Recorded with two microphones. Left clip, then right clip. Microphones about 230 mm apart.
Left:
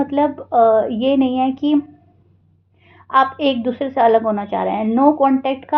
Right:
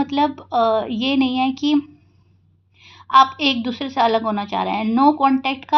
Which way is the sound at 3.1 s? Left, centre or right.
Right.